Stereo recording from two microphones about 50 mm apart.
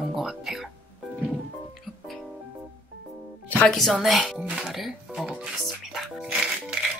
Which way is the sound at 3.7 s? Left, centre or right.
Centre.